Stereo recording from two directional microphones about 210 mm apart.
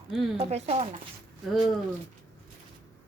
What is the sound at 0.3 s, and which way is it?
Speech, 30° right (ahead or behind).